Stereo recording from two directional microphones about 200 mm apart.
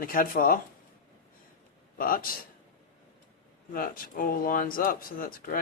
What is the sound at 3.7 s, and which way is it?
Speech, 45° left (ahead or behind).